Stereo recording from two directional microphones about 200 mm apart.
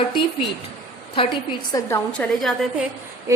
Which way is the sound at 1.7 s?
10° left (ahead or behind).